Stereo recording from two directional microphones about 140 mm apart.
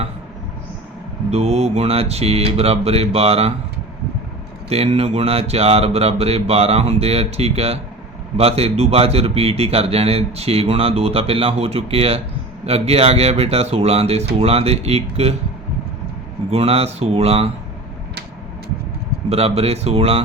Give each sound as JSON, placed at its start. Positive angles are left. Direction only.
{"t": 1.3, "sound": "speech", "side_deg": -50}
{"t": 4.7, "sound": "speech", "side_deg": -45}
{"t": 16.5, "sound": "speech", "side_deg": -45}
{"t": 19.3, "sound": "speech", "side_deg": -45}